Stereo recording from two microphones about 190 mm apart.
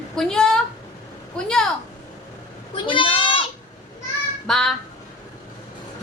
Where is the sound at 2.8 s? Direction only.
25° left (ahead or behind).